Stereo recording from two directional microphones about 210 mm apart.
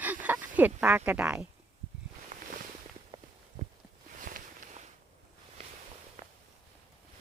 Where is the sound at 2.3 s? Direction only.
35° right (ahead or behind).